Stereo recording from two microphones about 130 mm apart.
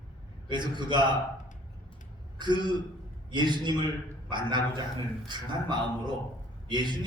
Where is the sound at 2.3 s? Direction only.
35° right (ahead or behind).